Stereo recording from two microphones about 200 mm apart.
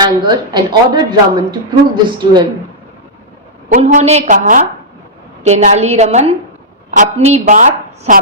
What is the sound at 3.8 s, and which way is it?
A woman's voice, 35° right (ahead or behind).